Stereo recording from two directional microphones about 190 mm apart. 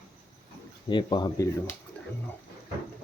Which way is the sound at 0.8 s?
25° left (ahead or behind).